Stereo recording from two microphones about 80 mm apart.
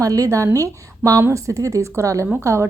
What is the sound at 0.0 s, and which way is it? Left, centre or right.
A woman's voice, right.